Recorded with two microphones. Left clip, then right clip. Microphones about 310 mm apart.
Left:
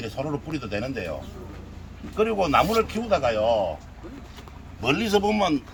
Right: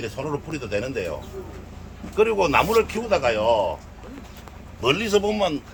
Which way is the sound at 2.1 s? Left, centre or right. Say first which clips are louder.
Right 2 dB; centre.